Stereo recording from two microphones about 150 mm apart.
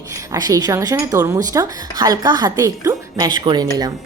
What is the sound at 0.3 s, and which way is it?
A woman's voice, 25° right (ahead or behind).